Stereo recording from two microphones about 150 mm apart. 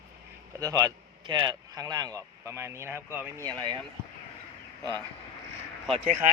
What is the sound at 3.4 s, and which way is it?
Speech, 30° right (ahead or behind).